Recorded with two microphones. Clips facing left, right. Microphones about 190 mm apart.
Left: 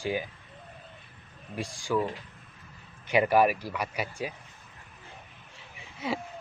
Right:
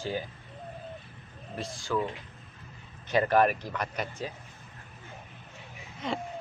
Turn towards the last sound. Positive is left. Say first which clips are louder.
# left 1 dB
turn(degrees=5)  # may be behind; listen again after turning